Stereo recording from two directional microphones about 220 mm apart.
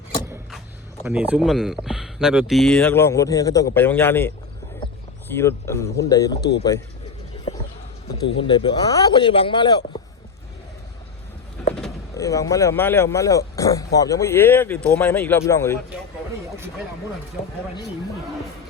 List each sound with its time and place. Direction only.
1.0 s speech: 5° right (ahead or behind); by 4.3 s 10° left (ahead or behind)
5.4 s speech: 10° left (ahead or behind)
7.5 s clip-clop: 30° left (ahead or behind)
8.4 s speech: 20° left (ahead or behind)
12.1 s speech: 15° left (ahead or behind)